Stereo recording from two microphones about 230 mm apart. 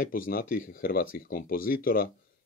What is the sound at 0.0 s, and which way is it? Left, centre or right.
Speech, left.